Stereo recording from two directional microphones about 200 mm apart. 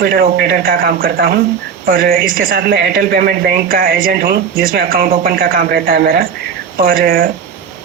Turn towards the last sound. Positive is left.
turn(degrees=-45)  # may be behind; listen again after turning